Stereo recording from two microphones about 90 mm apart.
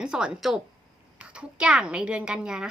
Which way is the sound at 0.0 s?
10° right (ahead or behind).